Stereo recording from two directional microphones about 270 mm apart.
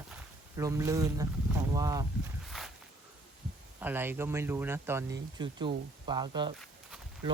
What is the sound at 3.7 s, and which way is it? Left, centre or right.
Speech, centre.